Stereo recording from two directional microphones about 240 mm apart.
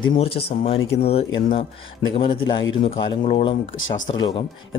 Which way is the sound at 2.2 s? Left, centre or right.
Centre.